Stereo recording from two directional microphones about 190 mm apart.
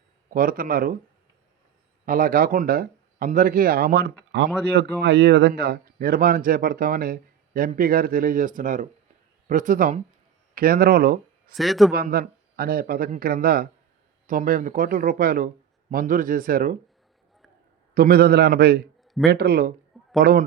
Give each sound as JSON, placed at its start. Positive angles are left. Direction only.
{"t": 0.3, "sound": "speech", "side_deg": -50}
{"t": 2.0, "sound": "speech", "side_deg": -50}
{"t": 11.5, "sound": "a man's voice", "side_deg": 0}
{"t": 12.0, "sound": "speech", "side_deg": -45}
{"t": 17.9, "sound": "a man's voice", "side_deg": -50}
{"t": 19.0, "sound": "a sound", "side_deg": 0}
{"t": 19.3, "sound": "speech", "side_deg": -55}
{"t": 19.9, "sound": "a sound", "side_deg": 0}